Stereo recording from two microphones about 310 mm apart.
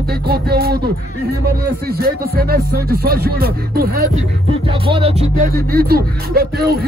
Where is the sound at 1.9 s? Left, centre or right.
Right.